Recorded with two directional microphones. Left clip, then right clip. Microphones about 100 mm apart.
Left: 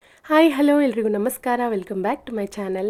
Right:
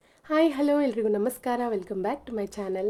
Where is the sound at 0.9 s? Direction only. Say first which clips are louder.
Left 4 dB; 25° left (ahead or behind).